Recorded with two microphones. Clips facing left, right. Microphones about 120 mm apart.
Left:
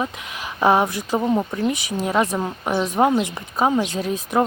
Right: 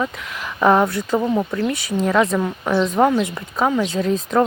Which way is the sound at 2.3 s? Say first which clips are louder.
Right 3 dB; 20° left (ahead or behind).